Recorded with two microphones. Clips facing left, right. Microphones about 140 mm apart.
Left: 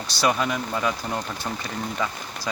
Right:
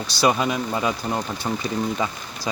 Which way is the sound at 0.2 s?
15° right (ahead or behind).